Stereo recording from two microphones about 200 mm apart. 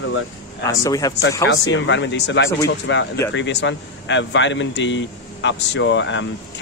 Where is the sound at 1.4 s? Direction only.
65° left (ahead or behind).